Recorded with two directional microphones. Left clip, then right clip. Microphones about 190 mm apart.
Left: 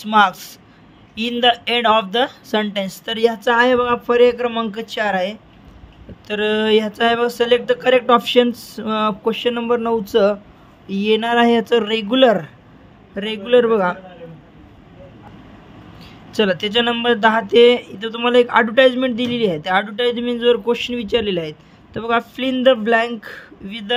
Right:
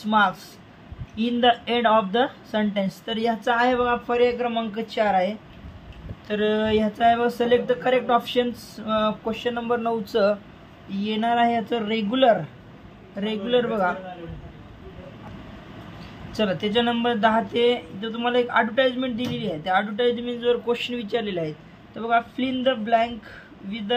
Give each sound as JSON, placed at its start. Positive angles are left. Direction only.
{"t": 0.0, "sound": "speech", "side_deg": 60}
{"t": 6.2, "sound": "a sound", "side_deg": 40}
{"t": 16.0, "sound": "speech", "side_deg": 45}